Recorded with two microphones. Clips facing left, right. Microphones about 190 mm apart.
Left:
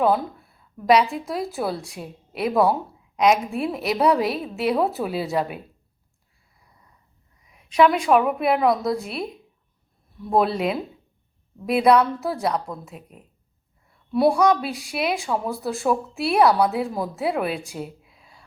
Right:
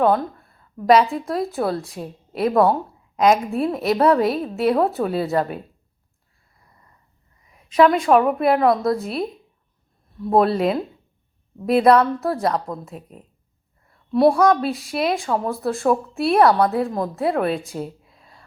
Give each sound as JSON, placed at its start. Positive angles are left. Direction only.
{"t": 0.0, "sound": "a woman's voice", "side_deg": 5}
{"t": 7.5, "sound": "speech", "side_deg": 5}
{"t": 12.5, "sound": "speech", "side_deg": -20}
{"t": 14.1, "sound": "speech", "side_deg": 0}